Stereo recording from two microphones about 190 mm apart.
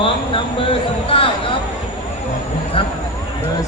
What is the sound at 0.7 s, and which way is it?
Speech, 30° left (ahead or behind).